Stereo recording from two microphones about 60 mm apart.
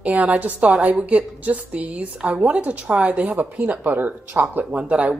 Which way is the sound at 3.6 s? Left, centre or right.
Right.